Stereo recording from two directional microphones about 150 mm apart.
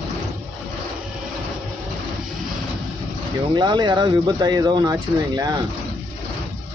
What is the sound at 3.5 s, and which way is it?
Speech, 30° right (ahead or behind).